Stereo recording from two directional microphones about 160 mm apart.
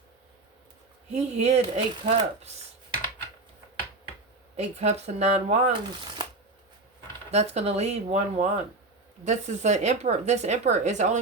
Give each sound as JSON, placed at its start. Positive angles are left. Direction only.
{"t": 1.1, "sound": "speech", "side_deg": -45}
{"t": 4.5, "sound": "speech", "side_deg": -45}
{"t": 7.3, "sound": "speech", "side_deg": -45}